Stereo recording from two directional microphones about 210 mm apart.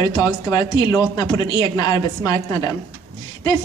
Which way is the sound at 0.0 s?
20° left (ahead or behind).